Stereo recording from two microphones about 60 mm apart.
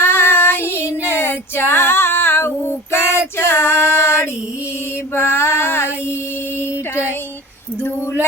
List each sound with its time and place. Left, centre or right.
0.0 s child singing: left
5.1 s female singing: left
6.9 s a sound: left